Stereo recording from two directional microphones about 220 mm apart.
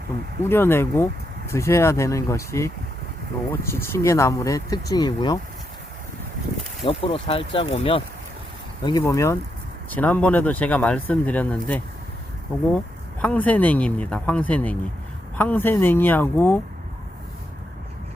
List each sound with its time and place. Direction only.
0.4 s speech: 10° left (ahead or behind)
6.8 s speech: 25° left (ahead or behind); by 11.8 s 5° left (ahead or behind)
13.2 s speech: 5° left (ahead or behind)